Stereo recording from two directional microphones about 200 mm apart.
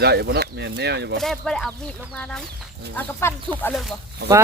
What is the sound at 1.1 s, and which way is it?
Speech, centre (ahead or behind).